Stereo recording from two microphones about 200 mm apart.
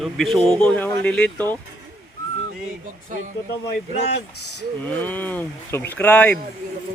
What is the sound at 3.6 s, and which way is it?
Speech, 55° left (ahead or behind).